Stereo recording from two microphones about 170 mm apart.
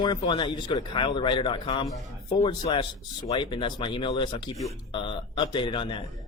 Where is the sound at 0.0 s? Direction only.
25° left (ahead or behind).